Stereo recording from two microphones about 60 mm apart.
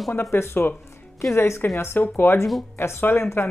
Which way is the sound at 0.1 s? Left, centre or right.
Left.